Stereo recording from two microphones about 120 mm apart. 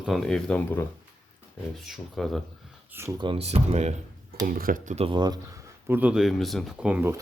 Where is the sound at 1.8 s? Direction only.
Centre (ahead or behind).